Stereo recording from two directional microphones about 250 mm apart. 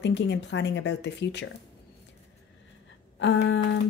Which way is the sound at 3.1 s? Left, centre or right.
Left.